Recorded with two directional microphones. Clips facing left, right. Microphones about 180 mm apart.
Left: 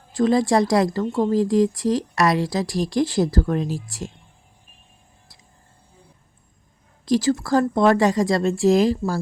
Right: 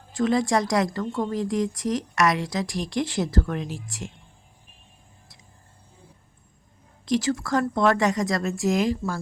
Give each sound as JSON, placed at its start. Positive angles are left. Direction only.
{"t": 0.1, "sound": "speech", "side_deg": 35}
{"t": 7.0, "sound": "speech", "side_deg": 35}